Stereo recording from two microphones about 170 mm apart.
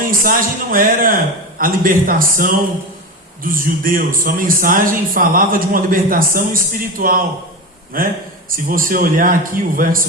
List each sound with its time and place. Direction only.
0.0 s a man's voice: 55° right (ahead or behind)